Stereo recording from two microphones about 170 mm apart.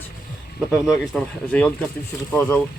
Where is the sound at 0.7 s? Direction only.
Centre (ahead or behind).